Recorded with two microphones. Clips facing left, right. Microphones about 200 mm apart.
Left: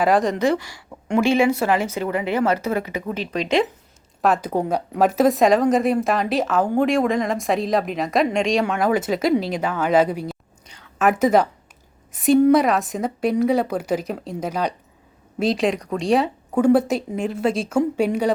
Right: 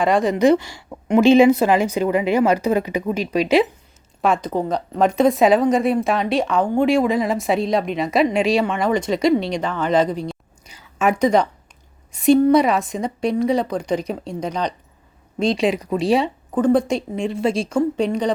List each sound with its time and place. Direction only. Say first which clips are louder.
0.0 s a woman's voice: right 1 dB; centre (ahead or behind)
0.3 s speech: right 5 dB; 20° right (ahead or behind)
4.2 s a woman's voice: even; 5° left (ahead or behind)
10.7 s a sound: even; 5° right (ahead or behind)
12.1 s a woman's voice: right 1 dB; centre (ahead or behind)